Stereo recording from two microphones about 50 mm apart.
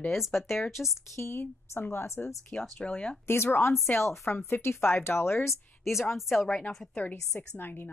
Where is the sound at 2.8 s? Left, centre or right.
Left.